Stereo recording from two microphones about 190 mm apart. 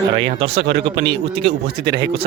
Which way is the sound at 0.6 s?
55° right (ahead or behind).